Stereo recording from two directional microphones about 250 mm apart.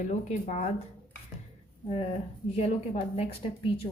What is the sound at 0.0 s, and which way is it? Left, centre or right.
Speech, left.